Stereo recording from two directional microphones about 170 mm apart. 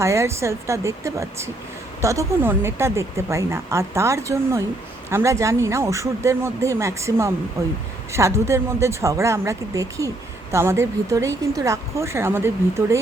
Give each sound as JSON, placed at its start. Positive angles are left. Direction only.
{"t": 0.0, "sound": "speech", "side_deg": -15}